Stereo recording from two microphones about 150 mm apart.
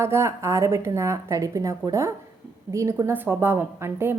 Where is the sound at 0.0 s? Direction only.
15° right (ahead or behind).